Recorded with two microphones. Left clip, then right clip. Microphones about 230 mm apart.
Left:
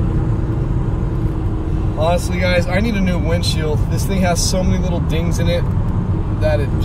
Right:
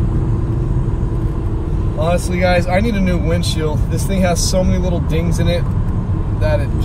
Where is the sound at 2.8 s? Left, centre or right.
Centre.